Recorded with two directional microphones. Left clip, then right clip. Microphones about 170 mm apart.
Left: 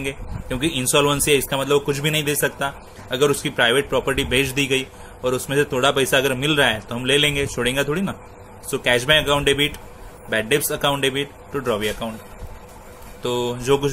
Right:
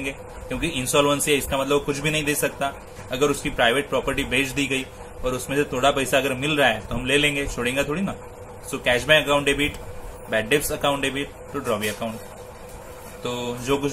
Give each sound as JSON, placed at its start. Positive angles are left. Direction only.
{"t": 0.0, "sound": "speech", "side_deg": 50}
{"t": 13.2, "sound": "speech", "side_deg": 50}